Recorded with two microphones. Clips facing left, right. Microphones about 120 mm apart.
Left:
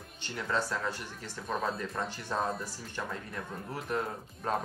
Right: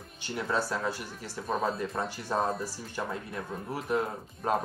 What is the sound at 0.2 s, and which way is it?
Speech, 10° right (ahead or behind).